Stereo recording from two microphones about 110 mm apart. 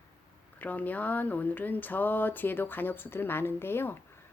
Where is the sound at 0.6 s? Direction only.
15° left (ahead or behind).